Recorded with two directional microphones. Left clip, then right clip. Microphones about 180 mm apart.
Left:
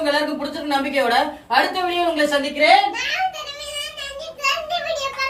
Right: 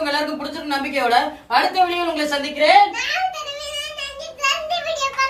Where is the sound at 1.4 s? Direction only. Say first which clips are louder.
Right 2 dB; 20° right (ahead or behind).